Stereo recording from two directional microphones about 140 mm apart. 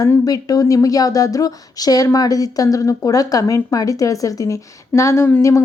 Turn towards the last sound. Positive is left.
turn(degrees=20)  # may be behind; listen again after turning